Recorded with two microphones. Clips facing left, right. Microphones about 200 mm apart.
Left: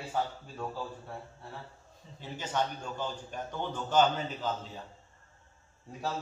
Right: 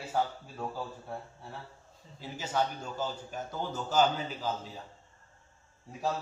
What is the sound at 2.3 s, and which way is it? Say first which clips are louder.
A man's voice: right 1 dB; 10° right (ahead or behind).